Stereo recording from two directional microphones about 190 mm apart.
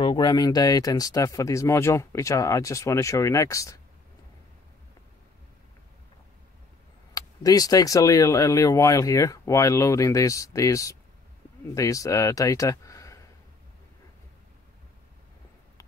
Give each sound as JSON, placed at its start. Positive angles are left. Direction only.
{"t": 0.0, "sound": "speech", "side_deg": 20}
{"t": 7.2, "sound": "speech", "side_deg": 20}